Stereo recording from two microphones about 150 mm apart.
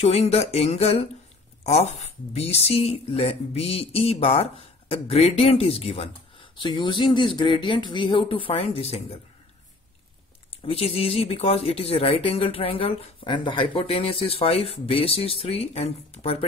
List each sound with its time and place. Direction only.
0.0 s a sound: 45° left (ahead or behind)
1.6 s speech: 45° left (ahead or behind)
10.5 s speech: 40° left (ahead or behind)